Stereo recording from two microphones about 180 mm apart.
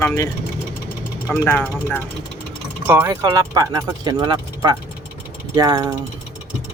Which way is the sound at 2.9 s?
15° right (ahead or behind).